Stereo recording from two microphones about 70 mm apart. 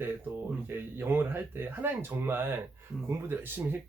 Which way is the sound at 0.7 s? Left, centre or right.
Right.